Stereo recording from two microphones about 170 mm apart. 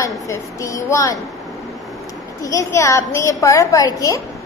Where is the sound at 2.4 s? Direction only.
20° left (ahead or behind).